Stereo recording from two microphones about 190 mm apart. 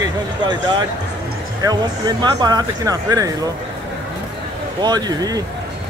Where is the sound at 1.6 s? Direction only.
20° right (ahead or behind).